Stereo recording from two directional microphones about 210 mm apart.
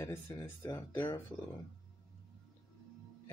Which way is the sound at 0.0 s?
15° left (ahead or behind).